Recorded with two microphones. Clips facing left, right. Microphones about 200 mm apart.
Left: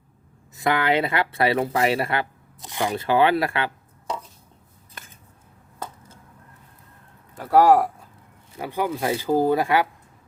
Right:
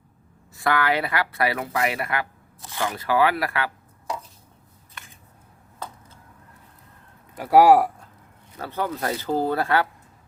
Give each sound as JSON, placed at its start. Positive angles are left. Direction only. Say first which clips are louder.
{"t": 0.5, "sound": "speech", "louder": "left 2 dB", "side_deg": 20}
{"t": 2.6, "sound": "speech", "louder": "left 3 dB", "side_deg": 20}
{"t": 7.3, "sound": "speech", "louder": "right 1 dB", "side_deg": -10}
{"t": 8.5, "sound": "speech", "louder": "left 2 dB", "side_deg": 10}